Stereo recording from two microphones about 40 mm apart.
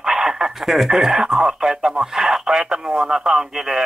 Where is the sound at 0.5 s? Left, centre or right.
Centre.